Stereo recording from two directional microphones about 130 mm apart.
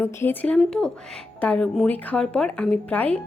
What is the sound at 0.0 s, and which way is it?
A woman's voice, 15° left (ahead or behind).